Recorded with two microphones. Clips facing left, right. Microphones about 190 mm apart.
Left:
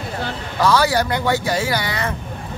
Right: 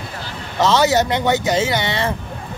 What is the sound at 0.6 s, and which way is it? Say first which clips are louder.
Speech: right 2 dB; 20° right (ahead or behind).